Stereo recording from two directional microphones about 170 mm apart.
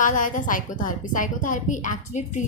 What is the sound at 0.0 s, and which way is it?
A woman's voice, 50° left (ahead or behind).